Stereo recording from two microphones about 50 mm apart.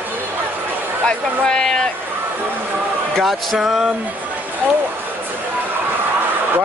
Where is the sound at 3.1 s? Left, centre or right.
Centre.